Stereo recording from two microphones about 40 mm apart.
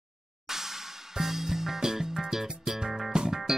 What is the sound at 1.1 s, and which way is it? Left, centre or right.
Music, centre.